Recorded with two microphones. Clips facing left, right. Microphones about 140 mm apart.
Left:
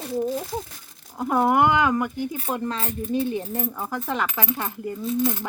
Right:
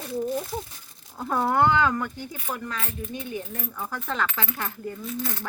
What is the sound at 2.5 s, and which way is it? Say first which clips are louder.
Speech: left 5 dB; 30° left (ahead or behind).